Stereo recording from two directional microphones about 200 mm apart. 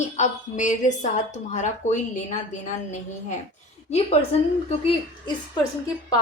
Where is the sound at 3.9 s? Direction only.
30° left (ahead or behind).